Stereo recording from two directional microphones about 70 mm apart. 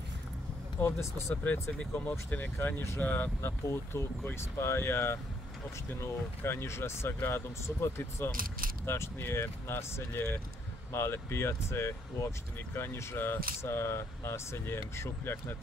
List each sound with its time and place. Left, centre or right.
0.7 s speech: left
1.3 s speech: left
2.6 s speech: left
3.0 s speech: left